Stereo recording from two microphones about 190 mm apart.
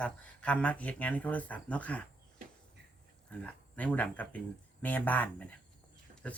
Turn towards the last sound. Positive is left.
turn(degrees=5)  # may be behind; listen again after turning